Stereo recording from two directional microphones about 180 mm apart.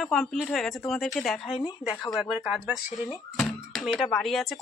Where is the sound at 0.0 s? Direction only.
Centre (ahead or behind).